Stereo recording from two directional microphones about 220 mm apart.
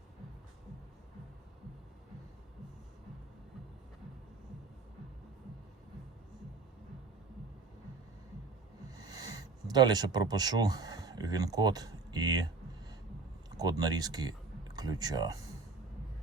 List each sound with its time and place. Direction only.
9.0 s speech: 15° right (ahead or behind)
13.6 s speech: 15° right (ahead or behind)